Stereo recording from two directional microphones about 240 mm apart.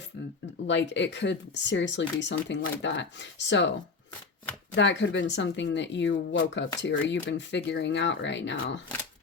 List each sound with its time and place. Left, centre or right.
0.7 s speech: left